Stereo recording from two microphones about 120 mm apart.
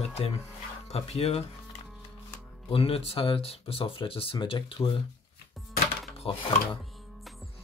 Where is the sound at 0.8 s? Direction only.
60° left (ahead or behind).